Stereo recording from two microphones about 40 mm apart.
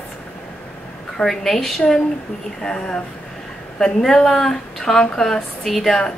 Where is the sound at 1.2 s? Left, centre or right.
Centre.